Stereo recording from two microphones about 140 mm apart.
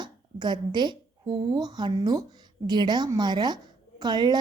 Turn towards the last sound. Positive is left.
turn(degrees=-30)  # may be behind; listen again after turning